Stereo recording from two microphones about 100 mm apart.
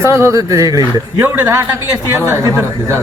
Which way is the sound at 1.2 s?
20° right (ahead or behind).